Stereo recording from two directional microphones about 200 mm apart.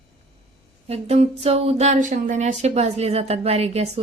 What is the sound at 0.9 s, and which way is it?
Speech, 30° right (ahead or behind).